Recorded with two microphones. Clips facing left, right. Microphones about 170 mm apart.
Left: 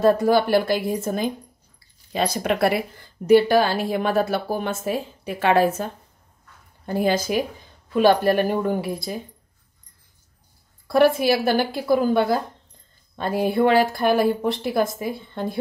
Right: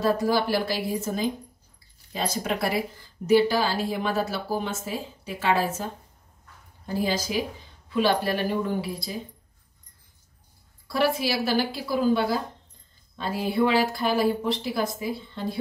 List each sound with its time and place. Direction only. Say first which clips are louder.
0.0 s a woman's voice: left 6 dB; 55° left (ahead or behind)
6.9 s a woman's voice: left 5 dB; 55° left (ahead or behind)
10.9 s speech: left 7 dB; 50° left (ahead or behind)